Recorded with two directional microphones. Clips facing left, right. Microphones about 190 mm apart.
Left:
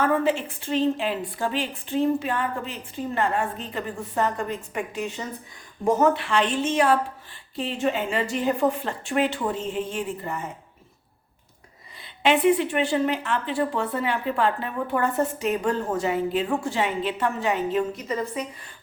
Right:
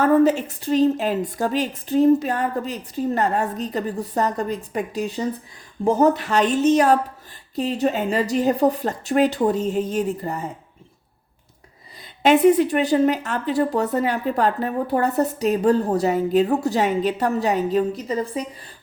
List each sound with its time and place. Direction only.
0.0 s speech: 40° right (ahead or behind)
12.2 s speech: 40° right (ahead or behind)